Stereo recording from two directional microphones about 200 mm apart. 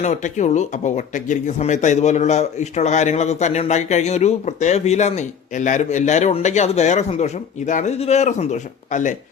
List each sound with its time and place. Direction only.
0.0 s speech: 35° left (ahead or behind)